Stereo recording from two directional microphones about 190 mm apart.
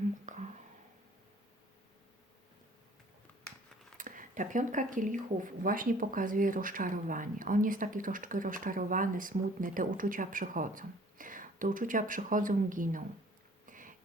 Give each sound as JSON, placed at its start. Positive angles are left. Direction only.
{"t": 0.3, "sound": "whispering", "side_deg": -40}
{"t": 3.9, "sound": "speech", "side_deg": -45}
{"t": 13.7, "sound": "a sound", "side_deg": -45}